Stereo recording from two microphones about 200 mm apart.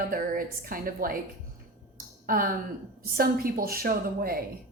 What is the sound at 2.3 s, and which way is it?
A woman's voice, 45° right (ahead or behind).